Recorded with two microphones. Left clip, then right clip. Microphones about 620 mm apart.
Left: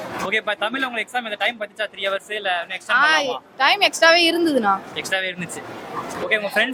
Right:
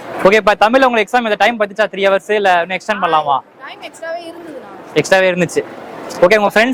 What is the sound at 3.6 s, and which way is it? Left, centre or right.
Speech, left.